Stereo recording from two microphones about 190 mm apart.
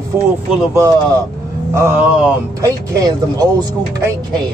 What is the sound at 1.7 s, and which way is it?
Speech, 15° right (ahead or behind).